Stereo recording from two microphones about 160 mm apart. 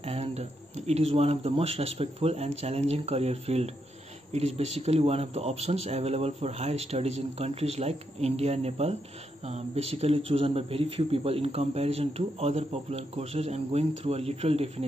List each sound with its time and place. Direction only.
0.0 s a man's voice: 40° right (ahead or behind)